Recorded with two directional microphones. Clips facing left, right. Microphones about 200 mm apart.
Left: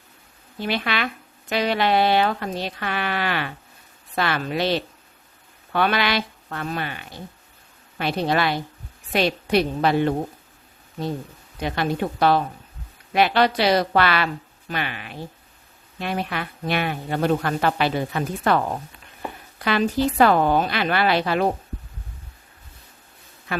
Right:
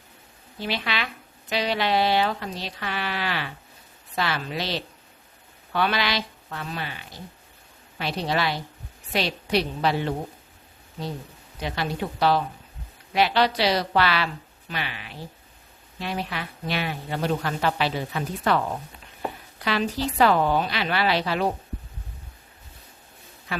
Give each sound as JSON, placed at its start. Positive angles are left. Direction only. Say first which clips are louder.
{"t": 0.6, "sound": "a woman's voice", "louder": "left 4 dB", "side_deg": 55}
{"t": 11.6, "sound": "a woman's voice", "louder": "left 5 dB", "side_deg": 50}
{"t": 19.6, "sound": "a woman's voice", "louder": "left 5 dB", "side_deg": 50}